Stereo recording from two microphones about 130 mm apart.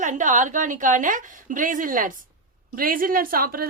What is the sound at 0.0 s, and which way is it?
A woman's voice, 75° right (ahead or behind).